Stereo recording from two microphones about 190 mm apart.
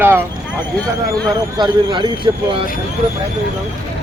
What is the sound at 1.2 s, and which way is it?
Speech, 25° right (ahead or behind).